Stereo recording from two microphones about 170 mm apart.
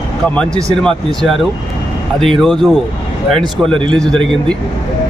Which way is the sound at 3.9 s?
5° left (ahead or behind).